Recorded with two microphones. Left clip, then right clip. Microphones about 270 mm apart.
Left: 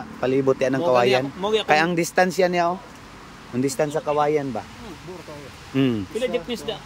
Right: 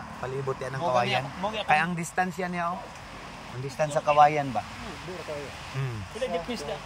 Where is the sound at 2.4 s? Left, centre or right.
Left.